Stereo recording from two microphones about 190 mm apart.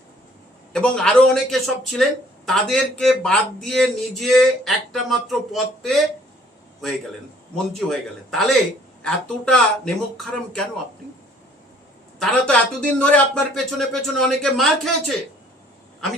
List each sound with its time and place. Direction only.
0.7 s speech: 5° left (ahead or behind)
7.8 s speech: centre (ahead or behind)
12.2 s speech: 5° left (ahead or behind)